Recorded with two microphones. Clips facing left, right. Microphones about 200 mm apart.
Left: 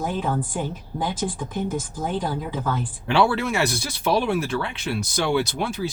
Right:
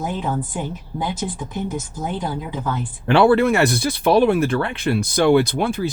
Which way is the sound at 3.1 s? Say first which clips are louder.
Right 7 dB; 55° right (ahead or behind).